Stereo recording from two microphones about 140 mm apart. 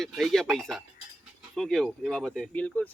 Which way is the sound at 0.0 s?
5° left (ahead or behind).